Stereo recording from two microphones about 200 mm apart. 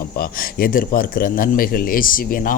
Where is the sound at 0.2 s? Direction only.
45° left (ahead or behind).